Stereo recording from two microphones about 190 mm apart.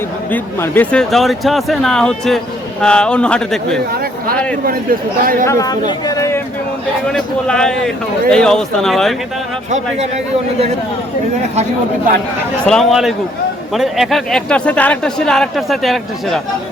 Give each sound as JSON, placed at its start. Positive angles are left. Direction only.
{"t": 0.3, "sound": "speech", "side_deg": 10}
{"t": 4.6, "sound": "speech", "side_deg": -50}
{"t": 5.5, "sound": "speech", "side_deg": 20}
{"t": 7.1, "sound": "speech", "side_deg": 5}
{"t": 9.6, "sound": "a man's voice", "side_deg": -40}
{"t": 12.6, "sound": "speech", "side_deg": 0}